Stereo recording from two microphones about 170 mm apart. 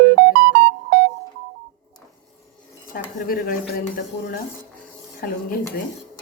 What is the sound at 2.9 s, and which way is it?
Speech, 55° left (ahead or behind).